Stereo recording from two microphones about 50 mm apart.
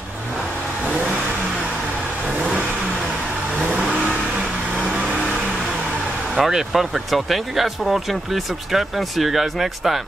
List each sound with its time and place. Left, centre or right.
2.2 s vehicle: right
6.3 s speech: centre